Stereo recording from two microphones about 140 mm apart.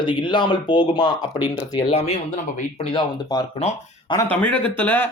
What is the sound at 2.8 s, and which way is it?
Speech, 35° left (ahead or behind).